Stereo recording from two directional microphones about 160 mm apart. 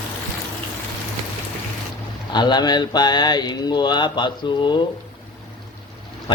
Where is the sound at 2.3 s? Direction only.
25° left (ahead or behind).